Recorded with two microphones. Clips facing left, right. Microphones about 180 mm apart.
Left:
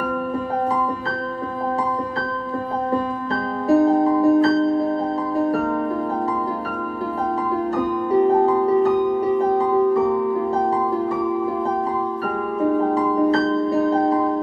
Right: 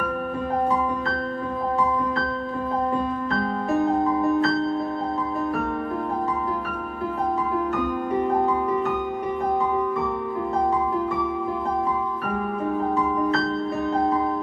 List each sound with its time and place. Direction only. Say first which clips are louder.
3.6 s music: left 7 dB; 35° left (ahead or behind)
8.6 s music: left 7 dB; 35° left (ahead or behind)
12.9 s music: left 5 dB; 35° left (ahead or behind)